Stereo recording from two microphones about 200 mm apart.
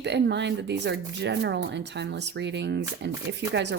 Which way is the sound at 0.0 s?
60° right (ahead or behind).